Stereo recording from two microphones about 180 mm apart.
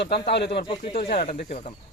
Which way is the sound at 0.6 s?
30° left (ahead or behind).